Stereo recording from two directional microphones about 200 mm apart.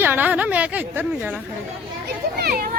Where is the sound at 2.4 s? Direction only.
50° right (ahead or behind).